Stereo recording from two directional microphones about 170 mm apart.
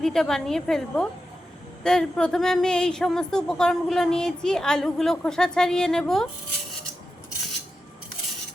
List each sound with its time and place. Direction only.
0.0 s speech: 5° left (ahead or behind)